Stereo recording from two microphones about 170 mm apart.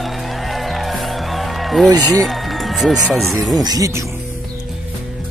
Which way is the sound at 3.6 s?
20° right (ahead or behind).